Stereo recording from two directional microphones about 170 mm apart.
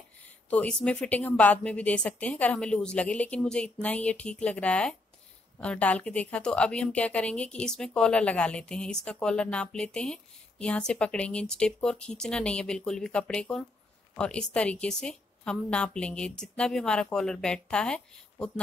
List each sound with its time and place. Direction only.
0.5 s a woman's voice: 5° left (ahead or behind)